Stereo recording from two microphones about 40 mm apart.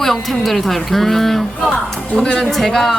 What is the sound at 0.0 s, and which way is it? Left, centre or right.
A woman's voice, centre.